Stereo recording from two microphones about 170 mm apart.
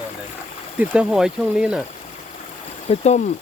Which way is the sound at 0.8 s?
5° right (ahead or behind).